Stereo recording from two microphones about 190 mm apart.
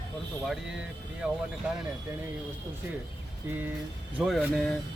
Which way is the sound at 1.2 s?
5° right (ahead or behind).